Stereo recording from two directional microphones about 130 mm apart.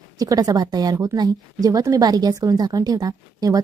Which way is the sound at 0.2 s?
30° right (ahead or behind).